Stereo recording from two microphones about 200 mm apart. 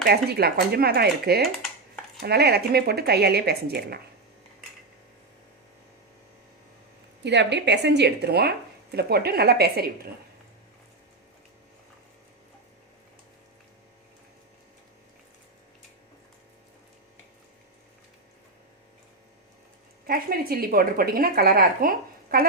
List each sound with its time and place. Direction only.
0.0 s speech: 55° right (ahead or behind)
7.3 s speech: 60° right (ahead or behind)
20.1 s speech: 50° right (ahead or behind)